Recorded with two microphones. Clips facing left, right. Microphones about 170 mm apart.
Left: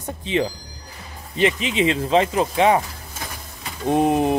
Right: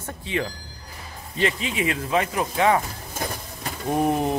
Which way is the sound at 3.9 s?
20° left (ahead or behind).